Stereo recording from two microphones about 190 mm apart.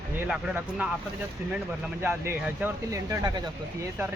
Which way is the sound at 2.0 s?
10° right (ahead or behind).